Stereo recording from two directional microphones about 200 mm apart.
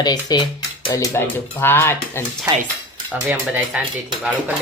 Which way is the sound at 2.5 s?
15° right (ahead or behind).